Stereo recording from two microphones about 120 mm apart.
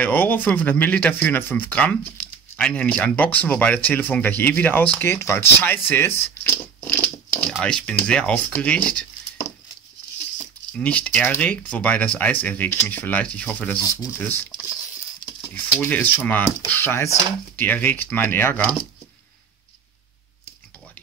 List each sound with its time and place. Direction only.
0.0 s speech: 15° left (ahead or behind)
10.8 s speech: 10° left (ahead or behind)
15.5 s speech: 15° left (ahead or behind)